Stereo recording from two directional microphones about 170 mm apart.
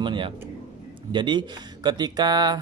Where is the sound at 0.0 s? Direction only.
30° right (ahead or behind).